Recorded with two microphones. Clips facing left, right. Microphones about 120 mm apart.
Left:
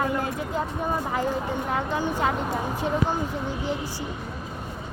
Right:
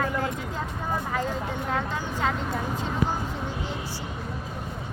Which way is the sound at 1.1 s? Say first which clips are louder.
Left 3 dB; 15° left (ahead or behind).